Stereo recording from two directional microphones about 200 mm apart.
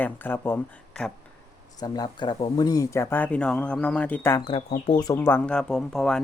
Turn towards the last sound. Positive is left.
turn(degrees=0)  # may be behind; listen again after turning